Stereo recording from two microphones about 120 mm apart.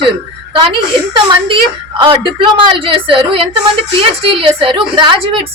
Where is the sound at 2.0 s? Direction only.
45° right (ahead or behind).